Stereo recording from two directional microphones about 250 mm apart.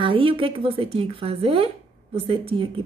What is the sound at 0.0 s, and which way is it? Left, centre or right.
A woman's voice, right.